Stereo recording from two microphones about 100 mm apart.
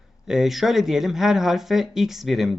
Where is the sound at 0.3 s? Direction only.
5° right (ahead or behind).